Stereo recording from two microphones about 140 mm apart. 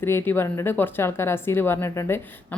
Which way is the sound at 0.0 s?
15° left (ahead or behind).